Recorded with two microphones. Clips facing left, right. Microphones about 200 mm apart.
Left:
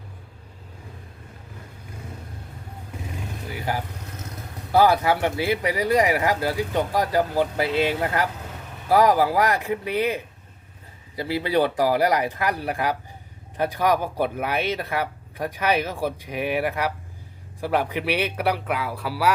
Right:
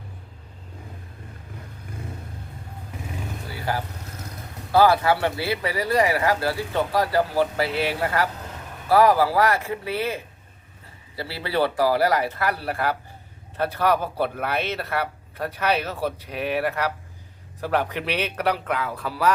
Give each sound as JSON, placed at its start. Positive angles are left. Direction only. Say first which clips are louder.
{"t": 3.5, "sound": "vehicle", "louder": "even", "side_deg": 15}
{"t": 4.7, "sound": "speech", "louder": "even", "side_deg": 15}
{"t": 11.2, "sound": "speech", "louder": "left 3 dB", "side_deg": 15}